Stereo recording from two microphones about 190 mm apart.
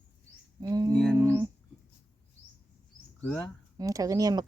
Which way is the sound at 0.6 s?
20° right (ahead or behind).